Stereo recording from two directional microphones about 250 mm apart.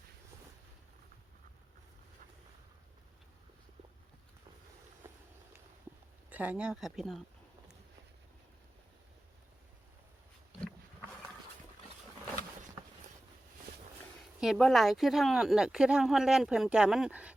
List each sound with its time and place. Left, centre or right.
6.3 s a woman's voice: centre
14.4 s a woman's voice: centre